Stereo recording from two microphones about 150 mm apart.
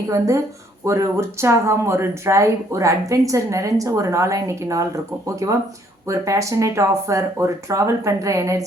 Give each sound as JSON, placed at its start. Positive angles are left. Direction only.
{"t": 0.9, "sound": "speech", "side_deg": -20}